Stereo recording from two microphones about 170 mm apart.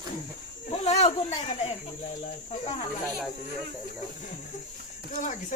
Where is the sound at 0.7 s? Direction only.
40° left (ahead or behind).